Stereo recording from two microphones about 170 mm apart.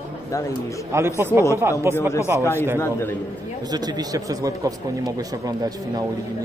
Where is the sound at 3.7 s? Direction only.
25° right (ahead or behind).